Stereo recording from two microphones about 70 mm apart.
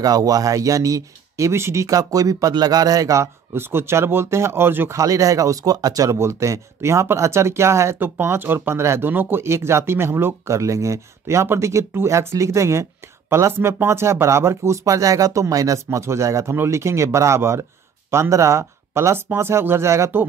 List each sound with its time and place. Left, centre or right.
0.0 s speech: right
3.5 s speech: right
4.9 s speech: right
8.0 s speech: right